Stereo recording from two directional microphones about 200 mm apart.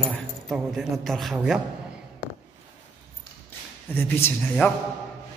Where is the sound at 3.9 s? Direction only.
10° left (ahead or behind).